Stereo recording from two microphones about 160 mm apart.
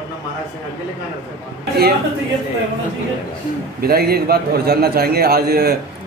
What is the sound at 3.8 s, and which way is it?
A man's voice, 75° right (ahead or behind).